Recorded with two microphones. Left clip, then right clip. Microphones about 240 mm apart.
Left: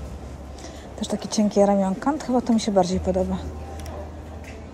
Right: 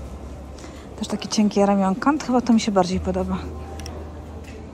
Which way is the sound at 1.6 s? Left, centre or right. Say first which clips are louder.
Right 1 dB; right.